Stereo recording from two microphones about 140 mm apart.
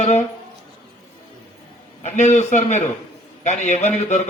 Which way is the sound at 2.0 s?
55° left (ahead or behind).